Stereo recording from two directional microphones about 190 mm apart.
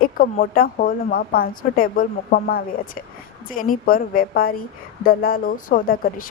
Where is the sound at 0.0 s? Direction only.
50° left (ahead or behind).